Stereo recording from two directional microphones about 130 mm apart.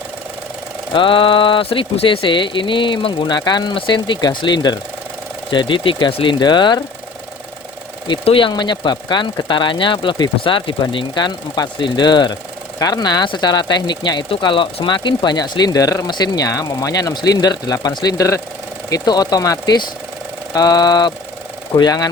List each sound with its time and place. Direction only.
0.9 s speech: 40° left (ahead or behind)
8.0 s speech: 40° left (ahead or behind)